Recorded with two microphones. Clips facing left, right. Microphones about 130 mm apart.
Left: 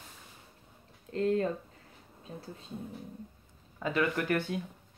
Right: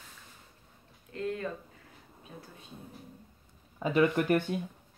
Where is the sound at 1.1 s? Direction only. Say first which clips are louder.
Left 7 dB; 35° left (ahead or behind).